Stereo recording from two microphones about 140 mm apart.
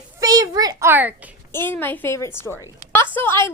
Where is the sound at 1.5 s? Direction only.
15° left (ahead or behind).